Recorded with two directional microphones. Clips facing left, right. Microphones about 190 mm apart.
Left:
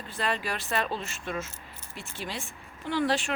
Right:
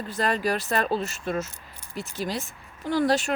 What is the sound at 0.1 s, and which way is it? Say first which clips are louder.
Speech: right 6 dB; 40° right (ahead or behind).